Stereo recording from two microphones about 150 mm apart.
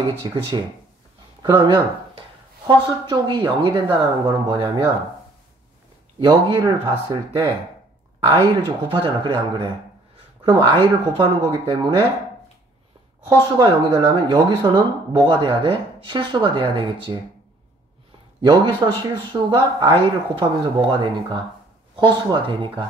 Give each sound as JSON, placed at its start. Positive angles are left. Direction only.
{"t": 0.2, "sound": "speech", "side_deg": -30}
{"t": 6.1, "sound": "speech", "side_deg": -30}
{"t": 13.3, "sound": "speech", "side_deg": -30}
{"t": 18.4, "sound": "speech", "side_deg": -30}